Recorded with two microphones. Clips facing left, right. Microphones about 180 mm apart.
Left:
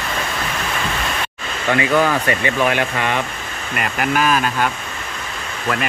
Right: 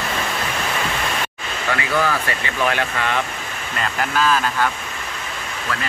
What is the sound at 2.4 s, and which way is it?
Speech, 20° left (ahead or behind).